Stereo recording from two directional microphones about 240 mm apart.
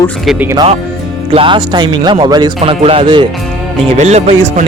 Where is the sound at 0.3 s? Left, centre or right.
Centre.